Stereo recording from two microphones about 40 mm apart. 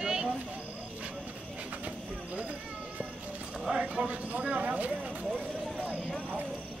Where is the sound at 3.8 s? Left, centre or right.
Right.